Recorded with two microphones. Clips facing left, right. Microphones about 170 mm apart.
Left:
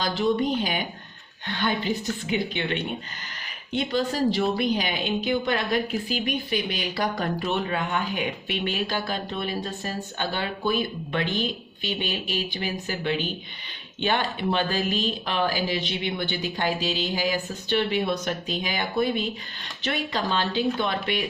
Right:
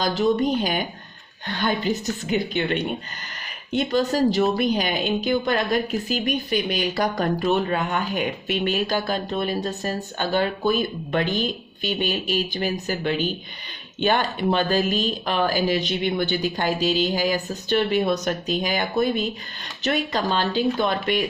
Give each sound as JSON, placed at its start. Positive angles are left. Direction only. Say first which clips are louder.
{"t": 0.0, "sound": "a woman's voice", "louder": "right 3 dB", "side_deg": -40}